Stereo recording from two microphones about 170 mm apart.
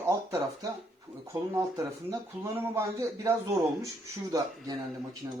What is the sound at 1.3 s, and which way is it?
Speech, 20° right (ahead or behind).